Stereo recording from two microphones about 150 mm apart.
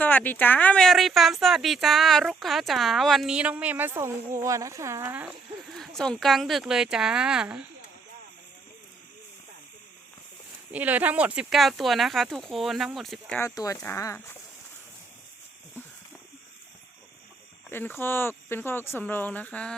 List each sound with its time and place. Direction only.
0.0 s a woman's voice: 10° left (ahead or behind); by 5.3 s 15° right (ahead or behind)
5.6 s speech: centre (ahead or behind)
10.7 s speech: 10° right (ahead or behind)
13.4 s speech: 20° left (ahead or behind)
17.7 s speech: 15° left (ahead or behind)